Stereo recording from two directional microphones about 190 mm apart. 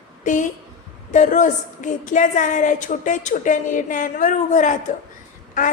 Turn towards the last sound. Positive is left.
turn(degrees=45)  # may be behind; listen again after turning